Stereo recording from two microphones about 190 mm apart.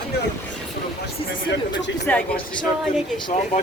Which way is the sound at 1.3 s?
75° left (ahead or behind).